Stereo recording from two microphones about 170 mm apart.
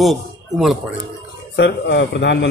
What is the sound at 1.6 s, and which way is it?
Speech, 90° left.